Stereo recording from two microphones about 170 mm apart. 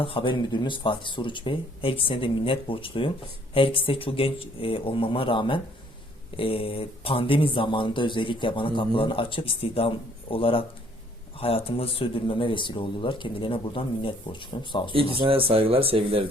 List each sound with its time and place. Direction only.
0.0 s speech: 30° left (ahead or behind)
15.2 s speech: 30° right (ahead or behind)